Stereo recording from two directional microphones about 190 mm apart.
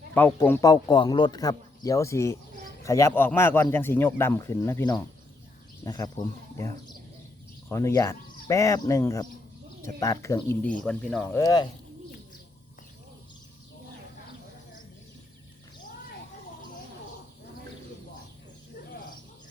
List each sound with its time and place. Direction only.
0.1 s a man's voice: 10° left (ahead or behind)
7.7 s a man's voice: 15° left (ahead or behind)
11.3 s speech: 20° left (ahead or behind)